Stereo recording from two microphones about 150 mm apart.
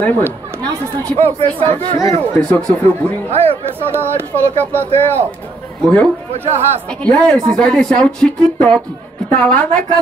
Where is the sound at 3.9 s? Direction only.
15° right (ahead or behind).